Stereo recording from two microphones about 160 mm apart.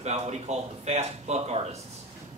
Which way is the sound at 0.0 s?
45° right (ahead or behind).